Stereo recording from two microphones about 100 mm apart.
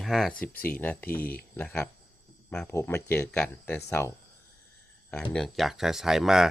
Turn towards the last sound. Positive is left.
turn(degrees=-5)  # may be behind; listen again after turning